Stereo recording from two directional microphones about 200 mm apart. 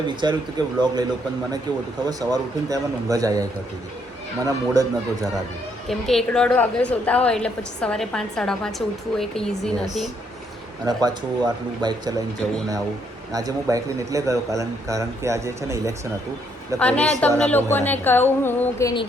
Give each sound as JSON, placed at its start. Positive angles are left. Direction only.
{"t": 0.2, "sound": "speech", "side_deg": -20}
{"t": 2.0, "sound": "a man's voice", "side_deg": -15}
{"t": 5.9, "sound": "a woman's voice", "side_deg": 0}
{"t": 10.8, "sound": "speech", "side_deg": -20}
{"t": 13.3, "sound": "a man's voice", "side_deg": -15}
{"t": 16.7, "sound": "a woman's voice", "side_deg": 5}